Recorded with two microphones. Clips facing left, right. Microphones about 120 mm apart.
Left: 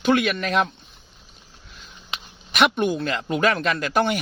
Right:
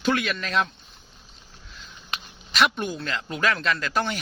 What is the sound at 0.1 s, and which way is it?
Speech, 25° left (ahead or behind).